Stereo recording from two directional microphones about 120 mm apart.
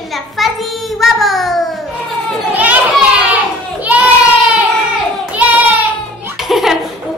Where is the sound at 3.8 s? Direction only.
10° right (ahead or behind).